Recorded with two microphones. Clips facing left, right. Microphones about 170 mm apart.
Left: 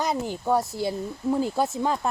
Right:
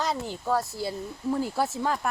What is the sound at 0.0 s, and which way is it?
Speech, 15° left (ahead or behind).